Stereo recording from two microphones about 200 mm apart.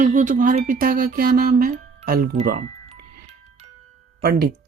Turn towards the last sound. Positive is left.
turn(degrees=-45)  # may be behind; listen again after turning